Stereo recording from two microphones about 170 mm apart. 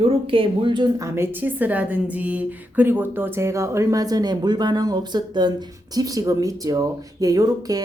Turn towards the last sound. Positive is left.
turn(degrees=-20)  # may be behind; listen again after turning